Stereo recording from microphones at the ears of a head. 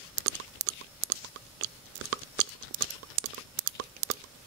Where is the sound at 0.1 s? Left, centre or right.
Right.